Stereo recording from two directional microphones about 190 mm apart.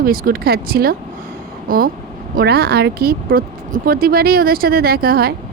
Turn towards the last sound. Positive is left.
turn(degrees=-55)  # may be behind; listen again after turning